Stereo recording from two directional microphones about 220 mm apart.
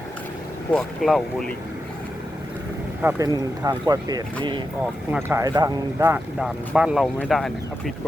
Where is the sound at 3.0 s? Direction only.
15° right (ahead or behind).